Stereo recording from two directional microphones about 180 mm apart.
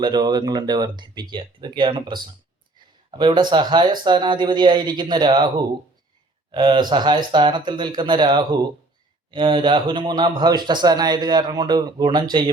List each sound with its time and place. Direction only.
0.0 s speech: 25° right (ahead or behind)